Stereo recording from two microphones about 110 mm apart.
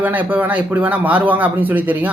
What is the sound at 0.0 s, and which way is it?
A man's voice, 15° right (ahead or behind).